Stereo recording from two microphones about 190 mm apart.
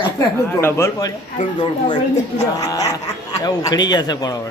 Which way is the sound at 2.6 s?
20° left (ahead or behind).